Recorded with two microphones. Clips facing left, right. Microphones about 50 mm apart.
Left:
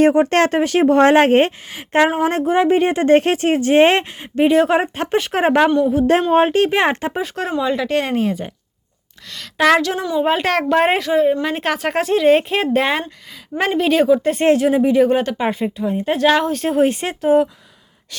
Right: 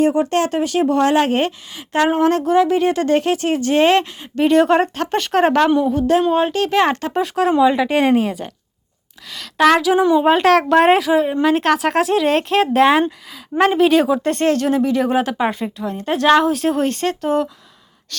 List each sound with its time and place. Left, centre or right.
0.3 s a woman's voice: left
2.0 s speech: centre
2.3 s speech: left
4.4 s speech: centre
6.3 s speech: left
7.2 s speech: centre
7.6 s speech: centre
15.0 s speech: centre
16.8 s speech: centre
18.1 s gasp: centre